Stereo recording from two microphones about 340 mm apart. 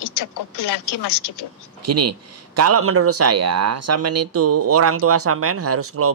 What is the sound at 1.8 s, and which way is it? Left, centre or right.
Speech, right.